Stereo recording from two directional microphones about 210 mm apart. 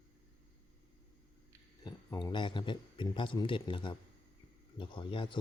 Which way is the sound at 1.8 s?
20° left (ahead or behind).